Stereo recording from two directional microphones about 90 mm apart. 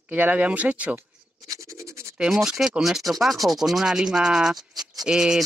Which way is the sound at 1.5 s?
35° right (ahead or behind).